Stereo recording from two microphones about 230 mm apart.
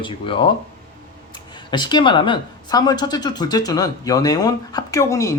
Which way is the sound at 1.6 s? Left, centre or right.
Centre.